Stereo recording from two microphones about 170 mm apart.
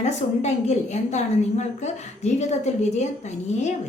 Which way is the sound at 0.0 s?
40° left (ahead or behind).